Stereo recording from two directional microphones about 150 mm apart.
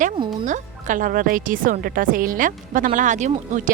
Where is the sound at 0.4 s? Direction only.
55° right (ahead or behind).